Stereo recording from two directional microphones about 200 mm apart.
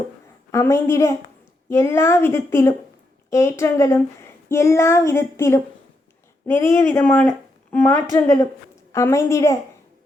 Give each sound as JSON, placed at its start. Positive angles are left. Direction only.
{"t": 0.5, "sound": "child singing", "side_deg": 15}
{"t": 6.5, "sound": "speech", "side_deg": 15}
{"t": 8.1, "sound": "child singing", "side_deg": 15}